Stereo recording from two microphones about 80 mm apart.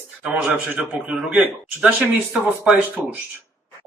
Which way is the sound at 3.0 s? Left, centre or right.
Centre.